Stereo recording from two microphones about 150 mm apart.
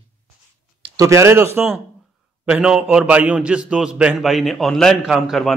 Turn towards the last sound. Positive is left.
turn(degrees=0)  # may be behind; listen again after turning